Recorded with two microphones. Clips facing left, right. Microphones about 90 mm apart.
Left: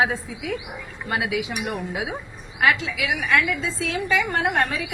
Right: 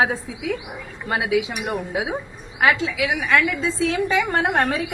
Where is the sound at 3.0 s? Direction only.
40° right (ahead or behind).